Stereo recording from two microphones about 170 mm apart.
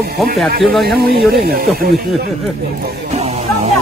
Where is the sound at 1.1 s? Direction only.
60° right (ahead or behind).